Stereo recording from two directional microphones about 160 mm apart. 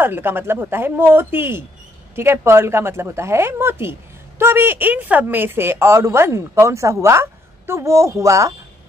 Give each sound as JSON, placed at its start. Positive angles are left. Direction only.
{"t": 0.0, "sound": "a woman's voice", "side_deg": -15}